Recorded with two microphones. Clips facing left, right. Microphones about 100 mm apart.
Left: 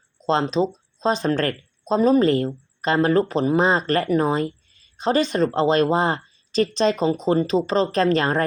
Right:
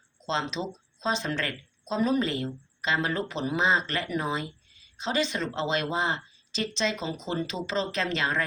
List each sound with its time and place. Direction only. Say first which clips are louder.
0.2 s speech: left 10 dB; 40° left (ahead or behind)